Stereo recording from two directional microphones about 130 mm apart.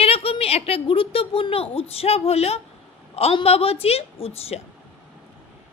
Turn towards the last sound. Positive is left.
turn(degrees=50)  # may be behind; listen again after turning